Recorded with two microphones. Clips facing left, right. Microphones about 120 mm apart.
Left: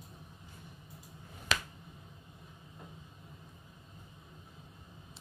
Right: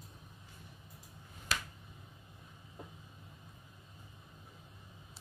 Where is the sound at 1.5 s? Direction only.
90° left.